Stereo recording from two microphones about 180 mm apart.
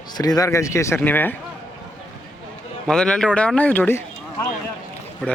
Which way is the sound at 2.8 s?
5° left (ahead or behind).